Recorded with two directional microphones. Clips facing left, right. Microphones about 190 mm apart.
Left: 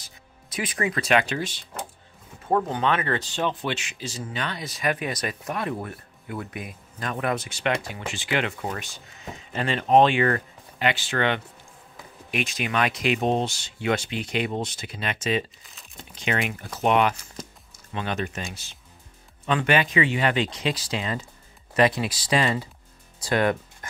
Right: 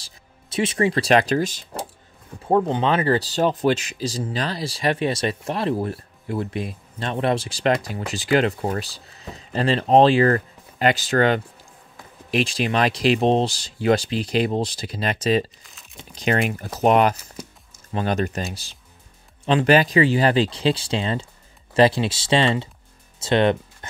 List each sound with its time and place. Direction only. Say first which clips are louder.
0.0 s speech: even; 25° right (ahead or behind)